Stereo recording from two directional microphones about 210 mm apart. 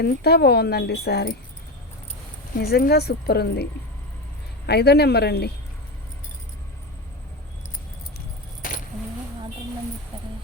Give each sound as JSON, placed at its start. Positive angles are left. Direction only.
{"t": 0.0, "sound": "speech", "side_deg": 50}
{"t": 2.6, "sound": "speech", "side_deg": 50}
{"t": 8.6, "sound": "keys jangling", "side_deg": 40}